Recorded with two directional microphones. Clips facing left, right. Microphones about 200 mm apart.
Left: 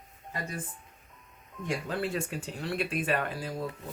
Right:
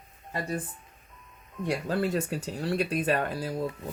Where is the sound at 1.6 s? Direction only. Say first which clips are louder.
Right 4 dB; 40° right (ahead or behind).